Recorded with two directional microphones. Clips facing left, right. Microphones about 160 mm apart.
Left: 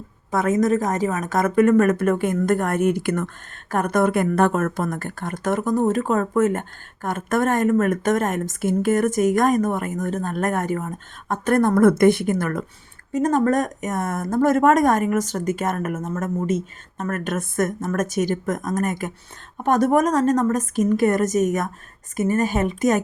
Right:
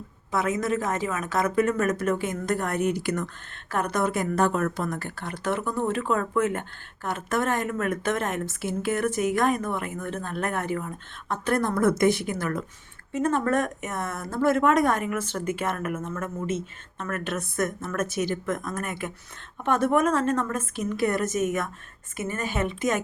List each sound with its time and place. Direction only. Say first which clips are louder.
0.3 s speech: left 6 dB; 45° left (ahead or behind)
13.1 s a woman's voice: left 5 dB; 40° left (ahead or behind)